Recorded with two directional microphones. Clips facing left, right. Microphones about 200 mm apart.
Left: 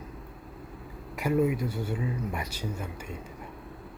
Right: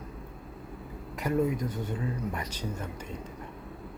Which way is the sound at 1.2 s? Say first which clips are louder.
Left 2 dB; 10° left (ahead or behind).